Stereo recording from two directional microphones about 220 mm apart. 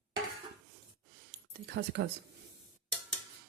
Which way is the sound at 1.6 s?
50° right (ahead or behind).